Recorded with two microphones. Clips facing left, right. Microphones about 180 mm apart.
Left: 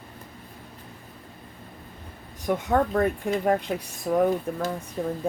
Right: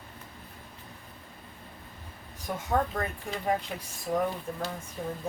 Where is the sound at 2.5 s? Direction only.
70° left (ahead or behind).